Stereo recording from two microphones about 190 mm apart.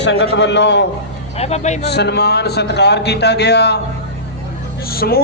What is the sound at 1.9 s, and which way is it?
A man's voice, 60° left (ahead or behind).